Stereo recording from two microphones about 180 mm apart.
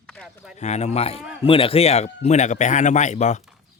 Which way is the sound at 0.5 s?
40° left (ahead or behind).